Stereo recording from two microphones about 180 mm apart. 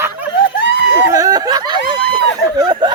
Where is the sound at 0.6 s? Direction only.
90° left.